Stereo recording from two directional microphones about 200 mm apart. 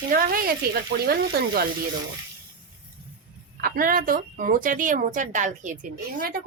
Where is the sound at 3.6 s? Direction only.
45° right (ahead or behind).